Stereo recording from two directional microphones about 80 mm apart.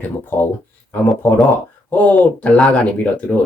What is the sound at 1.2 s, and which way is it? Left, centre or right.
Speech, left.